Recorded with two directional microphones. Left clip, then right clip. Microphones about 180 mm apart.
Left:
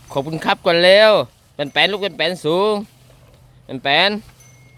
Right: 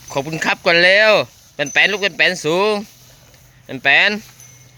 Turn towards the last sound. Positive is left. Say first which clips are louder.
# right 2 dB
turn(degrees=10)  # may be behind; listen again after turning